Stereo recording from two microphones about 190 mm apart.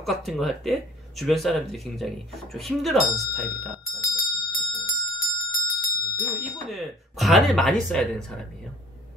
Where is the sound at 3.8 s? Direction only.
15° left (ahead or behind).